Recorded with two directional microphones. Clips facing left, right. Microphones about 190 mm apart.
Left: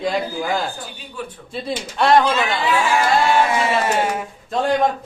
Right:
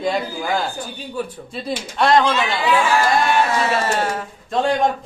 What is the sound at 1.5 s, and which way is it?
Speech, centre (ahead or behind).